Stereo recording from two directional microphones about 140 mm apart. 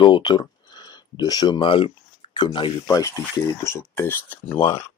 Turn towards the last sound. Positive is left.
turn(degrees=15)  # may be behind; listen again after turning